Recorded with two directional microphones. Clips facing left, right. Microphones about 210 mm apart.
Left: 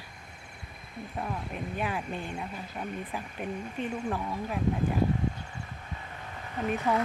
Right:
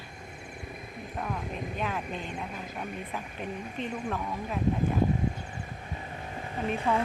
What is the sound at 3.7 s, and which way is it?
Speech, 10° left (ahead or behind).